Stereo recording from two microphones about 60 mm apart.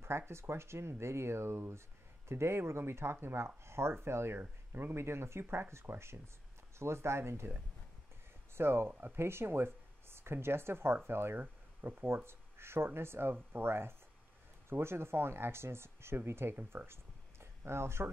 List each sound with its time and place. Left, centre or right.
0.0 s speech: right
8.5 s speech: right
11.8 s speech: right
12.3 s speech: right
16.7 s a sound: right